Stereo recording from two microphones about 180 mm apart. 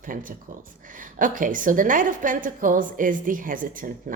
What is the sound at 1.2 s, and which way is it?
A woman's voice, 50° right (ahead or behind).